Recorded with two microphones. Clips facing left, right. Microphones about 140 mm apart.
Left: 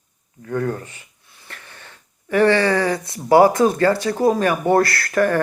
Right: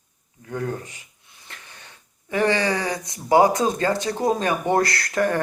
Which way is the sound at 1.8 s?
15° right (ahead or behind).